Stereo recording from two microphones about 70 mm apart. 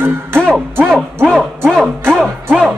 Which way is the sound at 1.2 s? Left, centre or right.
Centre.